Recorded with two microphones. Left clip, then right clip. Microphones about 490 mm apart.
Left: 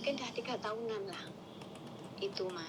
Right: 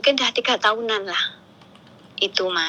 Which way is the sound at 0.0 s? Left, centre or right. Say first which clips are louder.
Right 19 dB; right.